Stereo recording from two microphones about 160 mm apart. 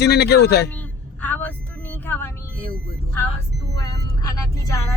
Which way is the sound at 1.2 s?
10° left (ahead or behind).